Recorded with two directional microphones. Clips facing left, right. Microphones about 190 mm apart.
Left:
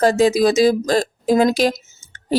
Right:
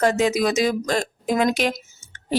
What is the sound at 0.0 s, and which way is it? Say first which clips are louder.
A woman's voice: left 5 dB; 35° left (ahead or behind).